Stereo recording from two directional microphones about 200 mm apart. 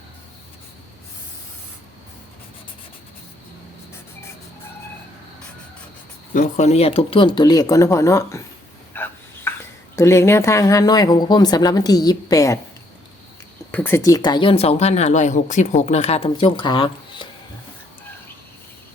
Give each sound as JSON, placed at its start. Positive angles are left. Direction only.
{"t": 6.3, "sound": "speech", "side_deg": 35}
{"t": 8.9, "sound": "a sound", "side_deg": 10}
{"t": 9.9, "sound": "speech", "side_deg": 15}
{"t": 13.7, "sound": "speech", "side_deg": 10}